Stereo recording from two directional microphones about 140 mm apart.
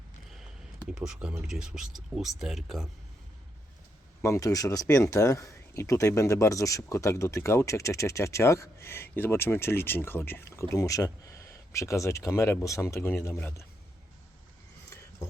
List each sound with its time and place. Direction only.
0.9 s speech: 5° right (ahead or behind)
4.2 s speech: 20° left (ahead or behind)